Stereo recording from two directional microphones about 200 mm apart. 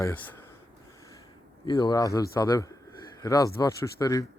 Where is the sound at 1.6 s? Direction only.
20° left (ahead or behind).